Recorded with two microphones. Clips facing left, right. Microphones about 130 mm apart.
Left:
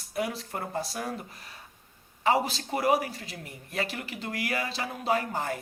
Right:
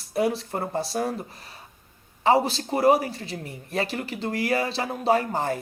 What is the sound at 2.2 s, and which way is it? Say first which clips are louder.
Speech: right 5 dB; 30° right (ahead or behind).